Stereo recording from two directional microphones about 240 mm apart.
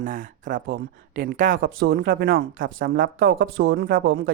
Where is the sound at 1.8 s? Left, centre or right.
Right.